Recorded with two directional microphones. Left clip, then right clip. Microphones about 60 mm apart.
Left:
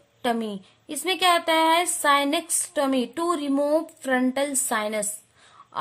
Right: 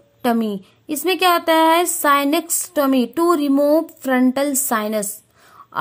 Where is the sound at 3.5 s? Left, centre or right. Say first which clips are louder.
Right 7 dB; centre.